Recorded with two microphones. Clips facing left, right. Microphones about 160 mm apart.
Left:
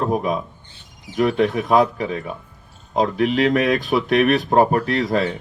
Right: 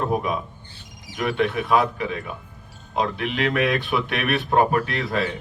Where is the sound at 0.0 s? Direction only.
35° left (ahead or behind).